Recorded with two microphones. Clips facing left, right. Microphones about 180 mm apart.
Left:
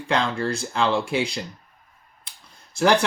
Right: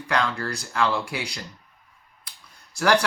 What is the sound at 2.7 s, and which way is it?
Speech, 20° left (ahead or behind).